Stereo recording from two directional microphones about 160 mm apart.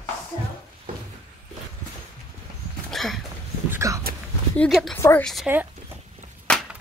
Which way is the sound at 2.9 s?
Centre (ahead or behind).